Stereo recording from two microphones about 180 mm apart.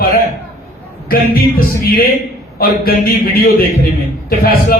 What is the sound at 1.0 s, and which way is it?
Speech, 55° left (ahead or behind).